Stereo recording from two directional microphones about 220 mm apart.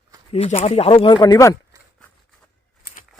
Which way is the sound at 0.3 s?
30° left (ahead or behind).